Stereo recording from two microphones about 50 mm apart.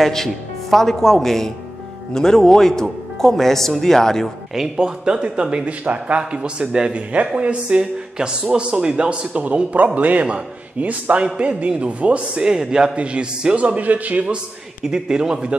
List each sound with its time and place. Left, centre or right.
0.0 s speech: centre
4.6 s speech: centre; by 14.2 s right
14.2 s a man's voice: centre